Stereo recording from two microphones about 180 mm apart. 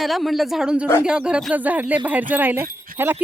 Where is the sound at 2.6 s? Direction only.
50° right (ahead or behind).